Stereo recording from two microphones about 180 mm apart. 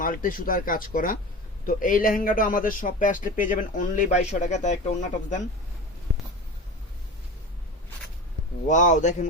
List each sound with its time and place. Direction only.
0.0 s a man's voice: 50° left (ahead or behind)
8.6 s a man's voice: 45° left (ahead or behind)